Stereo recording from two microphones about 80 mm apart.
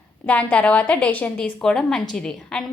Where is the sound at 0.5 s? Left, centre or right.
Centre.